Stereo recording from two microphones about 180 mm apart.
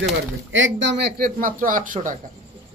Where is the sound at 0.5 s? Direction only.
85° right; by 2.2 s 45° right (ahead or behind).